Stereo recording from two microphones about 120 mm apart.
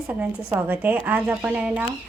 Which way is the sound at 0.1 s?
15° right (ahead or behind).